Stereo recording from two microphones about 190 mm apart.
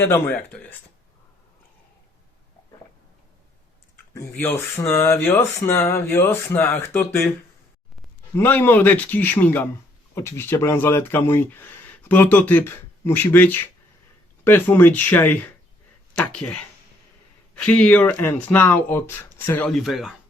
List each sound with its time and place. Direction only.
0.0 s speech: 10° left (ahead or behind)
4.1 s speech: 10° left (ahead or behind)
8.4 s speech: 10° left (ahead or behind)